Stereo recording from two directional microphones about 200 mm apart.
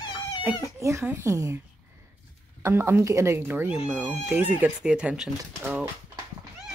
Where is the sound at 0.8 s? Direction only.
15° right (ahead or behind).